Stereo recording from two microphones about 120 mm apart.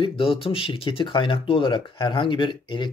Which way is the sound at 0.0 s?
50° left (ahead or behind).